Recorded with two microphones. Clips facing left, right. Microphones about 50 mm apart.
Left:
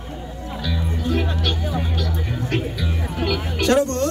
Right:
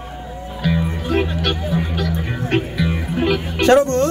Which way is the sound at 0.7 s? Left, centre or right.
Right.